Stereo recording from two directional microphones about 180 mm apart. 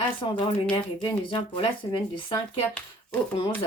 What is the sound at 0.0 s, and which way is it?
Speech, 25° left (ahead or behind).